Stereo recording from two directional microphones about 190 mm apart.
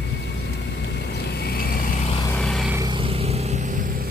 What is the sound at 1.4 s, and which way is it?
Vehicle, 55° left (ahead or behind).